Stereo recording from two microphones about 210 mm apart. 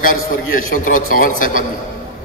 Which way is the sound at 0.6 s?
40° left (ahead or behind).